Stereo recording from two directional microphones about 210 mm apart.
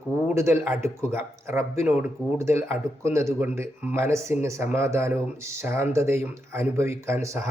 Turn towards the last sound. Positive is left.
turn(degrees=-15)  # may be behind; listen again after turning